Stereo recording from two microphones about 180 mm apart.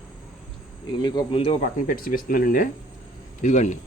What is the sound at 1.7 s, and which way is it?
Speech, 50° left (ahead or behind).